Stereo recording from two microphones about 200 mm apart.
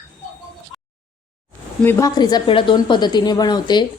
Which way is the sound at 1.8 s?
15° left (ahead or behind).